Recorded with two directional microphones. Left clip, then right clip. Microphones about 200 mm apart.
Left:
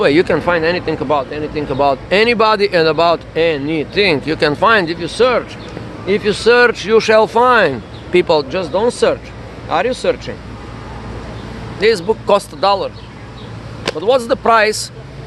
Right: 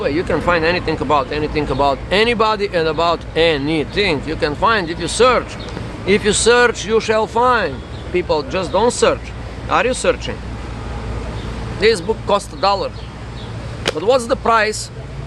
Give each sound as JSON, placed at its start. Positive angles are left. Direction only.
{"t": 0.0, "sound": "speech", "side_deg": 40}
{"t": 0.3, "sound": "speech", "side_deg": 15}
{"t": 1.8, "sound": "speech", "side_deg": 15}
{"t": 4.9, "sound": "speech", "side_deg": 5}
{"t": 8.1, "sound": "speech", "side_deg": 40}
{"t": 8.4, "sound": "speech", "side_deg": 10}
{"t": 11.8, "sound": "speech", "side_deg": 20}
{"t": 14.0, "sound": "speech", "side_deg": 15}